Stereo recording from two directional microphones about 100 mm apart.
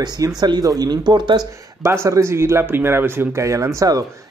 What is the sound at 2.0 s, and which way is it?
Speech, 30° right (ahead or behind).